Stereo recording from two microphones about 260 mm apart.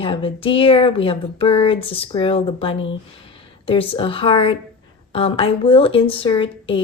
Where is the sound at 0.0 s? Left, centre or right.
Left.